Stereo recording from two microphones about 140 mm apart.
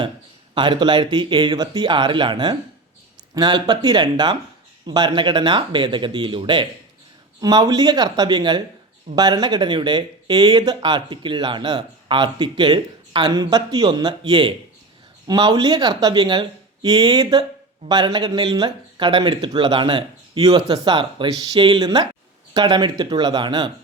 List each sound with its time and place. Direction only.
0.5 s speech: 35° right (ahead or behind)